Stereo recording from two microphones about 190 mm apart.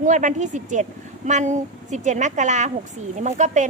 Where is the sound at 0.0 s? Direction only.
40° right (ahead or behind).